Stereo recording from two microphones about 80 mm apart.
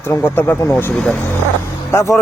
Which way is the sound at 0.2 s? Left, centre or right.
Left.